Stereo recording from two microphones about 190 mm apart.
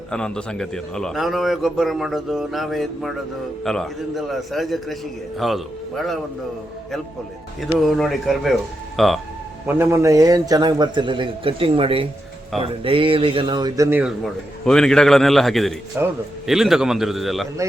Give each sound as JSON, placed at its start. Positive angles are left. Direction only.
{"t": 0.1, "sound": "a man's voice", "side_deg": 5}
{"t": 7.8, "sound": "a man's voice", "side_deg": 0}
{"t": 9.6, "sound": "a man's voice", "side_deg": -15}
{"t": 14.6, "sound": "a man's voice", "side_deg": 5}
{"t": 16.0, "sound": "a man's voice", "side_deg": -10}